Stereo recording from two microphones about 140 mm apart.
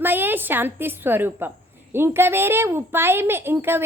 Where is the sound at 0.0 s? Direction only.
15° right (ahead or behind).